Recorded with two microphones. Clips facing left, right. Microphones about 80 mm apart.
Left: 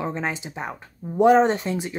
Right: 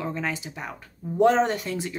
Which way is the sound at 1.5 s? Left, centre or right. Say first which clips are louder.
Left 3 dB; left.